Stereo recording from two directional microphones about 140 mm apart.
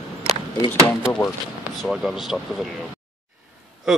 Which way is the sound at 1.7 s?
Centre (ahead or behind).